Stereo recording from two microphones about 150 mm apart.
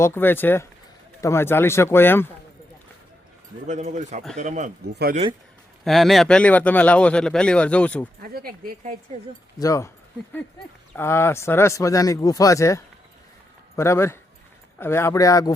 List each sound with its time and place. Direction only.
0.0 s speech: 15° left (ahead or behind)
3.7 s speech: 50° right (ahead or behind)
5.8 s speech: centre (ahead or behind)
8.2 s a woman's voice: 85° right
9.6 s speech: 20° left (ahead or behind)
10.9 s speech: 15° left (ahead or behind)